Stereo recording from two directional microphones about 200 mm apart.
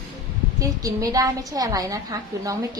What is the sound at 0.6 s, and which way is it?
A woman's voice, 15° right (ahead or behind).